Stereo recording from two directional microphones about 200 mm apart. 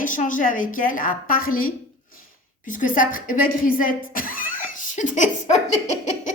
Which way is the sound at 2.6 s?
40° left (ahead or behind).